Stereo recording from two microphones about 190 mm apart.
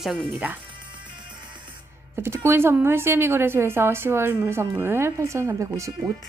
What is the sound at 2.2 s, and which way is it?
Speech, 15° right (ahead or behind).